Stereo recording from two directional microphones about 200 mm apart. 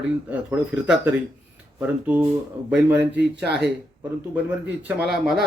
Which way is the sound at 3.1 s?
60° right (ahead or behind).